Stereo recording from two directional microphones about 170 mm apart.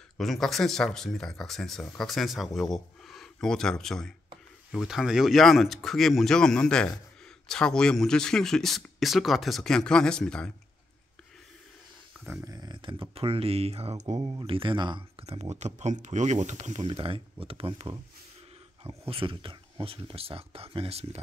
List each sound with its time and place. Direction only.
0.2 s speech: centre (ahead or behind)
12.3 s speech: 15° right (ahead or behind); by 16.8 s 45° right (ahead or behind)
16.8 s speech: 30° right (ahead or behind)